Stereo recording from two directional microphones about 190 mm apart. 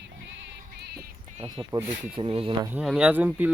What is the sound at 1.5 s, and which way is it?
Speech, 15° right (ahead or behind).